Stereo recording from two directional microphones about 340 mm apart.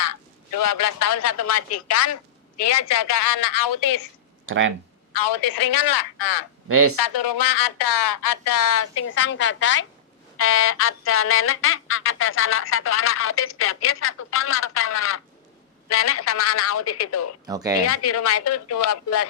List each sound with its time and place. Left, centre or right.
0.0 s a woman's voice: left
4.4 s speech: right
5.1 s speech: left
6.7 s speech: right
6.9 s speech: left
8.7 s a sound: left
17.4 s speech: centre
17.8 s a woman's voice: left